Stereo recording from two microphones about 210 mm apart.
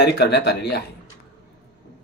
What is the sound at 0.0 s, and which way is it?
Speech, 50° left (ahead or behind).